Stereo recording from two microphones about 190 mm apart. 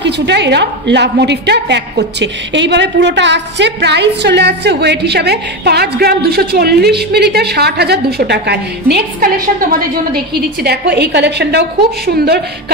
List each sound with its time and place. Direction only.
0.0 s a woman's voice: 65° right (ahead or behind)